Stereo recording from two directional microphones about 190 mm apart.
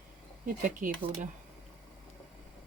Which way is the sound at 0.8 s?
45° right (ahead or behind).